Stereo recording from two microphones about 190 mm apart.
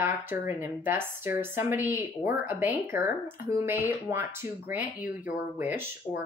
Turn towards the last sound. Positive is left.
turn(degrees=-10)  # may be behind; listen again after turning